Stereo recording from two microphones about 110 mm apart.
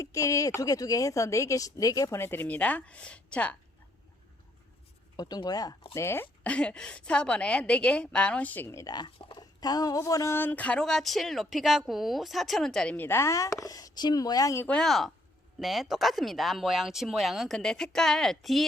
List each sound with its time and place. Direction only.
0.0 s speech: 30° left (ahead or behind); by 3.5 s 10° left (ahead or behind)
5.1 s speech: 40° left (ahead or behind)
5.9 s speech: 25° left (ahead or behind)
6.4 s a woman's voice: 10° left (ahead or behind); by 10.3 s 30° left (ahead or behind)
10.3 s speech: 15° left (ahead or behind)
13.1 s speech: 25° left (ahead or behind)
14.6 s speech: 10° left (ahead or behind)